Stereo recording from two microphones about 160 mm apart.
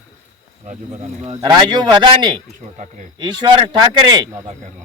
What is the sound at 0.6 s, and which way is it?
Speech, 40° right (ahead or behind).